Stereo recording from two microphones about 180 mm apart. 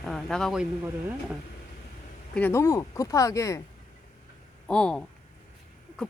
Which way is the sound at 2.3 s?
10° left (ahead or behind).